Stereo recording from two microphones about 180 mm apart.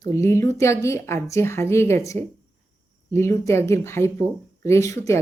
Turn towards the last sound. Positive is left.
turn(degrees=15)  # may be behind; listen again after turning